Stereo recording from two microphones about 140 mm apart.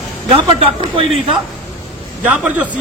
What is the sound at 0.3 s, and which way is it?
Speech, 40° right (ahead or behind).